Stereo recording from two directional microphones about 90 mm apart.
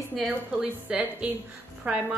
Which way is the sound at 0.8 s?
15° right (ahead or behind).